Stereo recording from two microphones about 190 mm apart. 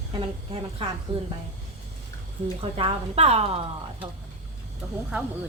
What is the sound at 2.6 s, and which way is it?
A woman's voice, 30° right (ahead or behind).